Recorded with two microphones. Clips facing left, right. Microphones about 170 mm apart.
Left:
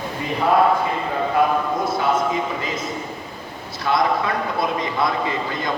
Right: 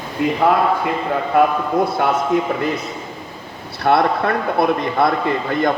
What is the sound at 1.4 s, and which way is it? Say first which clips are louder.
A man's voice: right 5 dB; 60° right (ahead or behind).